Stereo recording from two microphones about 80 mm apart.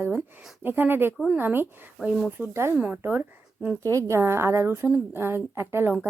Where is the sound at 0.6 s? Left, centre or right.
Right.